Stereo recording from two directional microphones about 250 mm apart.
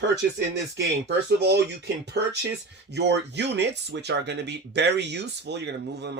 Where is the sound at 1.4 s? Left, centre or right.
Right.